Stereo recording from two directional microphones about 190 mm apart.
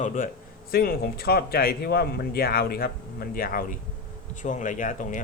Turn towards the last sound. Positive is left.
turn(degrees=40)  # may be behind; listen again after turning